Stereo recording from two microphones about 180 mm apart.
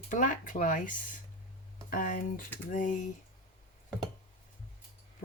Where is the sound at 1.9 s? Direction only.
50° left (ahead or behind).